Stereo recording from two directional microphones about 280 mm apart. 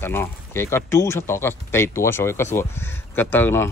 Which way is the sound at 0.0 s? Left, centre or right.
Centre.